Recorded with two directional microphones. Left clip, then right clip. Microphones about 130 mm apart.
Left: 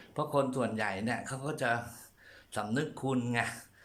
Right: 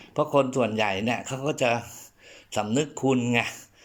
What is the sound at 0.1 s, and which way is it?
Speech, 5° right (ahead or behind).